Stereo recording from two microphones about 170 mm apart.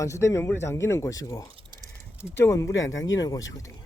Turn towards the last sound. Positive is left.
turn(degrees=20)  # may be behind; listen again after turning